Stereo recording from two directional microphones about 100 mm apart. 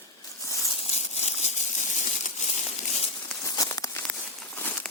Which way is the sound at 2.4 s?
90° left.